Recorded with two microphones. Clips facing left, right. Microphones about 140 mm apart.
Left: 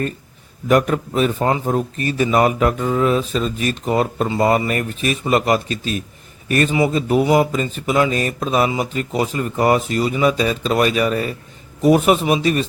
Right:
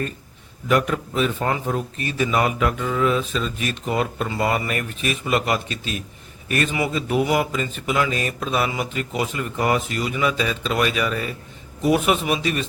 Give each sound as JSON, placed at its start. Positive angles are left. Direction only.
{"t": 0.7, "sound": "a man's voice", "side_deg": 45}
{"t": 1.5, "sound": "a man's voice", "side_deg": 30}
{"t": 1.7, "sound": "mantra", "side_deg": 40}